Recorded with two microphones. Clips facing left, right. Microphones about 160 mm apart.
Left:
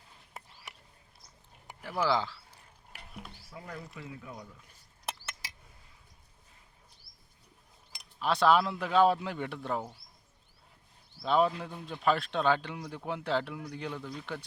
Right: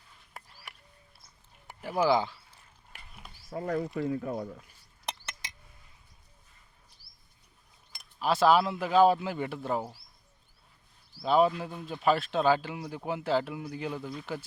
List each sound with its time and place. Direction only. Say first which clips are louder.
0.4 s a sound: even; 25° left (ahead or behind)
1.8 s speech: right 4 dB; 15° right (ahead or behind)
3.5 s speech: right 14 dB; 45° right (ahead or behind)
5.0 s a sound: right 1 dB; 5° left (ahead or behind)
8.2 s speech: right 2 dB; 5° right (ahead or behind)
11.2 s speech: right 3 dB; 5° right (ahead or behind)